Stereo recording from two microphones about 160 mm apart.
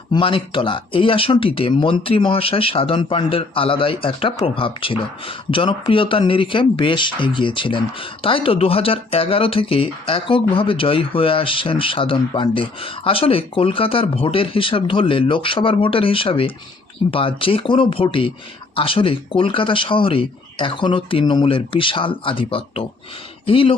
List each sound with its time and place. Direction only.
0.1 s speech: 35° left (ahead or behind)